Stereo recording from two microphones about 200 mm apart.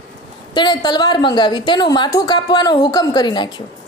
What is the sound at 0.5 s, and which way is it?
A woman's voice, 20° left (ahead or behind).